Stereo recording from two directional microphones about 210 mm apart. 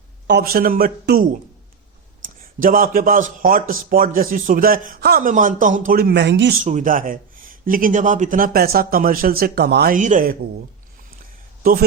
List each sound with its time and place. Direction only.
0.3 s a man's voice: 50° right (ahead or behind)
6.7 s a man's voice: 35° right (ahead or behind)